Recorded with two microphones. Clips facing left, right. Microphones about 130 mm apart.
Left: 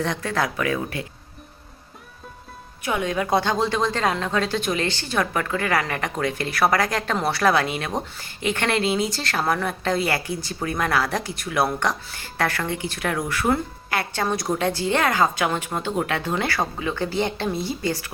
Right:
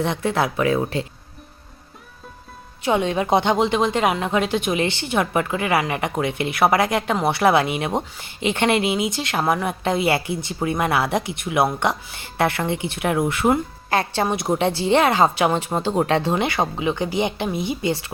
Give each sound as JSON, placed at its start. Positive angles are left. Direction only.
{"t": 0.0, "sound": "speech", "side_deg": -20}
{"t": 2.8, "sound": "speech", "side_deg": -25}